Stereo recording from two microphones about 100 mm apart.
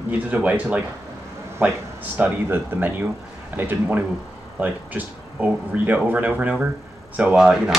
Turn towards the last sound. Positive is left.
turn(degrees=-5)  # may be behind; listen again after turning